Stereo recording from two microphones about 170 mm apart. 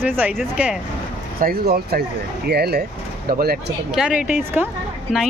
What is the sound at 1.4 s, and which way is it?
Speech, 60° right (ahead or behind).